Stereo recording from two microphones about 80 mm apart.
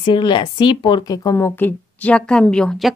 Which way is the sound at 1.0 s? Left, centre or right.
Left.